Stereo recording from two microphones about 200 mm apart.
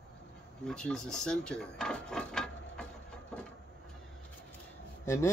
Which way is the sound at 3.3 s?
5° left (ahead or behind).